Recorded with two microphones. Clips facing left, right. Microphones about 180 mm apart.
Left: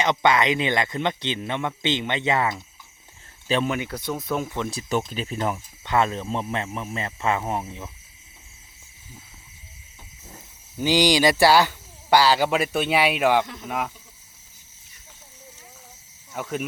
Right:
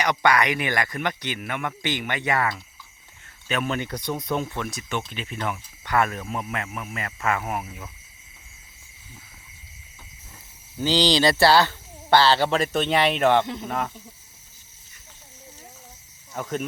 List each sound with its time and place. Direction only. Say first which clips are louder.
0.0 s speech: left 1 dB; 20° left (ahead or behind)
3.7 s speech: even; 5° left (ahead or behind)
4.5 s speech: left 4 dB; 25° left (ahead or behind)
5.8 s speech: left 1 dB; 25° left (ahead or behind)
10.8 s speech: left 1 dB; 15° left (ahead or behind)
16.3 s speech: even; 5° left (ahead or behind)